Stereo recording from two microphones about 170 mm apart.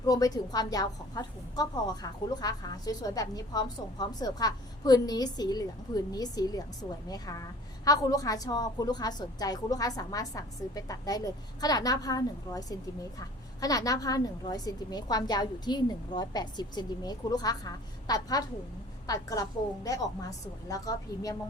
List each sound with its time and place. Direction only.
0.0 s a woman's voice: 20° left (ahead or behind)